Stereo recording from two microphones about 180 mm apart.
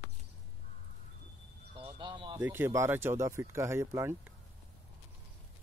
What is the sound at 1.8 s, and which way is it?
Speech, 30° right (ahead or behind).